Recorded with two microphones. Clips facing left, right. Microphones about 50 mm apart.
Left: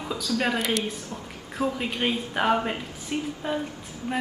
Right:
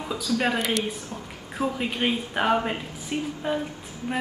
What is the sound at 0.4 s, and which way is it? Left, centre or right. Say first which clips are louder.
A woman's voice: even; centre.